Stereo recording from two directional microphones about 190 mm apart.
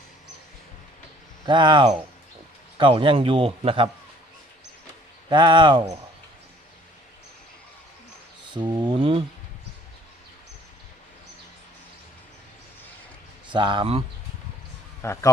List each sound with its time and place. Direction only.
1.5 s a man's voice: 25° right (ahead or behind)
5.3 s a man's voice: 25° right (ahead or behind)
8.5 s a man's voice: 25° right (ahead or behind)
13.5 s a man's voice: 25° right (ahead or behind)
15.0 s speech: 15° left (ahead or behind)